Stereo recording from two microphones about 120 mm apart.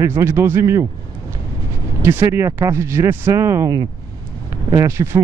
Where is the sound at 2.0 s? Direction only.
20° right (ahead or behind).